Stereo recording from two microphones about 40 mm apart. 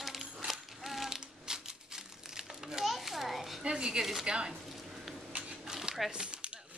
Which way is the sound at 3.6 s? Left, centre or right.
Right.